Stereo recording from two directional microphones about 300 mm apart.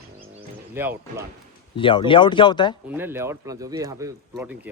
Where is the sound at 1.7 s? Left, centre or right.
Centre.